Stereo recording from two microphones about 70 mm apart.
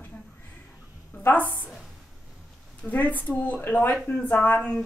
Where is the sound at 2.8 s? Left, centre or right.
Left.